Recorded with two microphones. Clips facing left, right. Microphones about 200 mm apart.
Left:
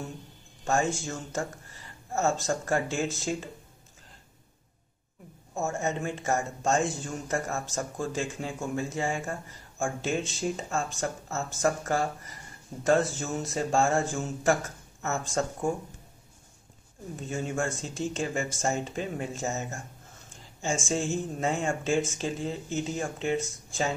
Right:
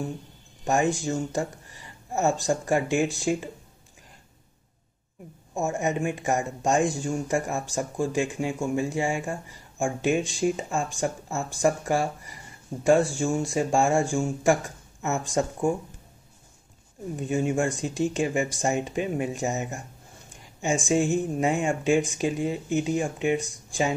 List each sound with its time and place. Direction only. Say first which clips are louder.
0.7 s speech: right 4 dB; 15° right (ahead or behind)
5.5 s speech: right 4 dB; 15° right (ahead or behind)
17.3 s speech: right 6 dB; 15° right (ahead or behind)